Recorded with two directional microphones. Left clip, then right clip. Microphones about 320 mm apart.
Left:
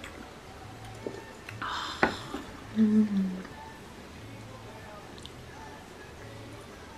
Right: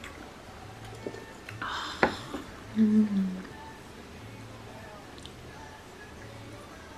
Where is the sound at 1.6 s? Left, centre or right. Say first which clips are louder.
Right 1 dB; centre.